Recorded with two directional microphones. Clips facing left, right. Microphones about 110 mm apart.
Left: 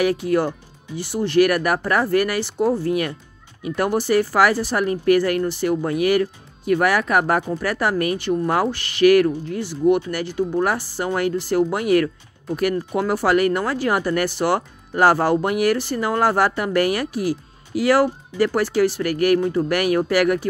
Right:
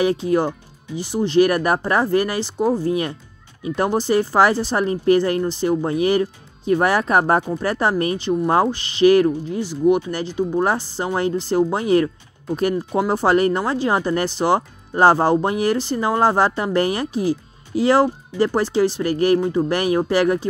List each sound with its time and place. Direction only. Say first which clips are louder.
0.0 s speech: right 1 dB; 25° right (ahead or behind)